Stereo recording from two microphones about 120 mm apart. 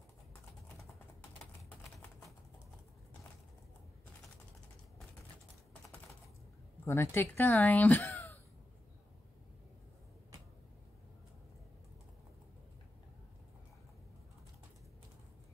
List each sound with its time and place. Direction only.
6.8 s speech: 20° left (ahead or behind)